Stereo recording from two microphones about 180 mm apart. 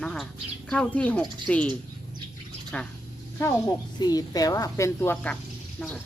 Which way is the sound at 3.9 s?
20° left (ahead or behind).